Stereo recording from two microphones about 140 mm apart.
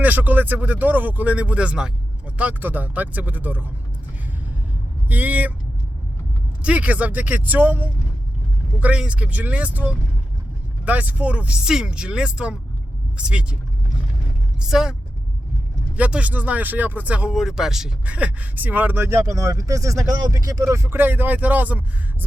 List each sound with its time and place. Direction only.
0.0 s speech: 10° right (ahead or behind)
5.0 s speech: 10° right (ahead or behind)
6.6 s speech: 10° right (ahead or behind)
14.6 s speech: 5° right (ahead or behind)
16.0 s speech: 10° right (ahead or behind)